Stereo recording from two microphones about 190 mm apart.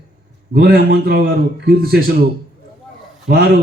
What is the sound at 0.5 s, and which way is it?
A man's voice, 55° right (ahead or behind).